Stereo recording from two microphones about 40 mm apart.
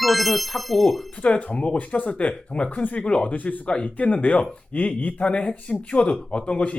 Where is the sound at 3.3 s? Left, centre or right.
Left.